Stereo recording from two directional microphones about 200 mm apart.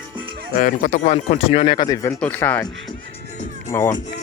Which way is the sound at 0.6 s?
45° left (ahead or behind).